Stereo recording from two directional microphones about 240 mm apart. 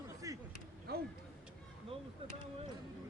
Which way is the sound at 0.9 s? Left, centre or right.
Right.